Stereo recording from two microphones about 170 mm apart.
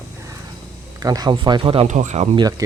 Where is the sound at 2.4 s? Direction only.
20° right (ahead or behind).